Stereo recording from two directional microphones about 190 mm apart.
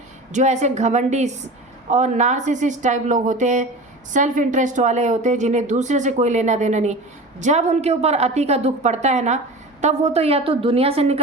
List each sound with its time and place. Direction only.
0.3 s a woman's voice: 40° right (ahead or behind)